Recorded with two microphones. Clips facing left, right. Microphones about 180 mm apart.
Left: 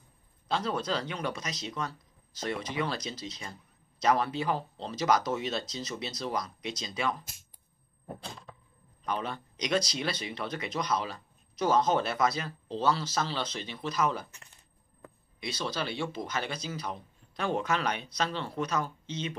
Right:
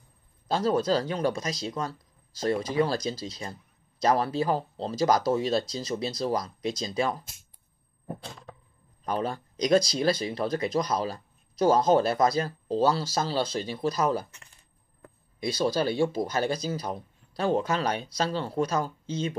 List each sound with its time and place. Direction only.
0.5 s speech: 40° right (ahead or behind)
9.0 s speech: 40° right (ahead or behind)
15.6 s speech: 45° right (ahead or behind)